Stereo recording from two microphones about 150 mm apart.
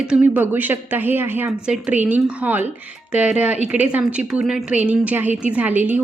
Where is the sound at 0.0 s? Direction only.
10° right (ahead or behind).